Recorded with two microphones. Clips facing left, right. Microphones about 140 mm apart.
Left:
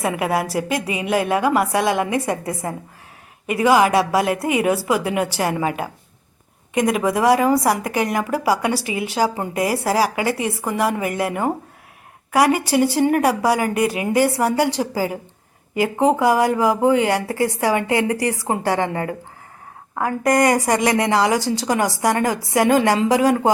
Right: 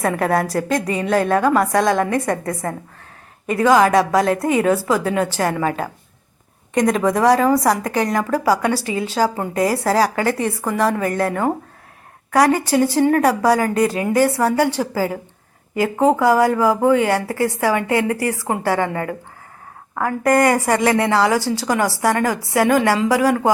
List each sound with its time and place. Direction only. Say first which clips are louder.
0.0 s a woman's voice: right 2 dB; 10° left (ahead or behind)
20.0 s a woman's voice: right 1 dB; 15° left (ahead or behind)